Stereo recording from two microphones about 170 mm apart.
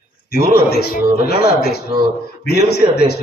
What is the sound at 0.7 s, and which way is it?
A man's voice, 70° left (ahead or behind).